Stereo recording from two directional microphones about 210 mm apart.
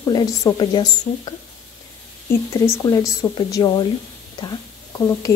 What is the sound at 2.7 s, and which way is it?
A woman's voice, 15° left (ahead or behind).